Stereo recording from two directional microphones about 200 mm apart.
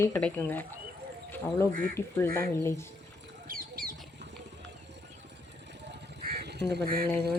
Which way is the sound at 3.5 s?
45° right (ahead or behind).